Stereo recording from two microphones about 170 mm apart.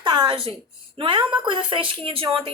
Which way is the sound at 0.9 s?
30° right (ahead or behind).